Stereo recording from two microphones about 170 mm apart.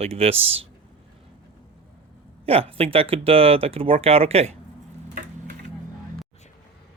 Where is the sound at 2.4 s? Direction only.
35° right (ahead or behind).